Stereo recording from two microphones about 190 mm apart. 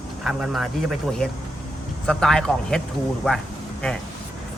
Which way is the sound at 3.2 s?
Centre (ahead or behind).